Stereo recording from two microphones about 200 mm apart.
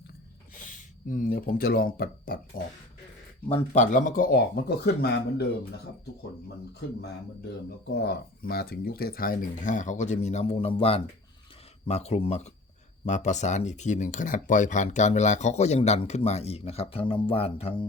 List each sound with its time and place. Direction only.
0.7 s speech: 40° left (ahead or behind)
3.5 s speech: 35° left (ahead or behind); by 5.5 s 55° left (ahead or behind)
7.9 s speech: 55° left (ahead or behind); by 17.8 s 30° left (ahead or behind)